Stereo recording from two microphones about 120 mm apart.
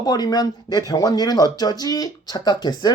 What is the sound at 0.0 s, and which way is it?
Speech, 35° left (ahead or behind).